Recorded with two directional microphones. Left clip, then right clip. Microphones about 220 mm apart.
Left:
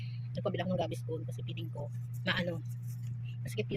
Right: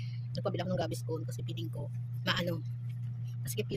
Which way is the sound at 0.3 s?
10° right (ahead or behind).